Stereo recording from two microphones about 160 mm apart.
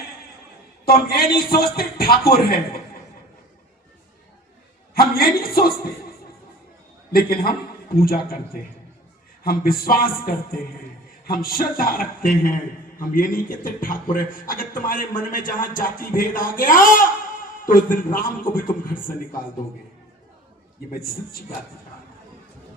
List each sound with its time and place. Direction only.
0.9 s a man's voice: 70° left (ahead or behind)
4.9 s a man's voice: 70° left (ahead or behind)
7.1 s a man's voice: 65° left (ahead or behind)
9.4 s a man's voice: 65° left (ahead or behind)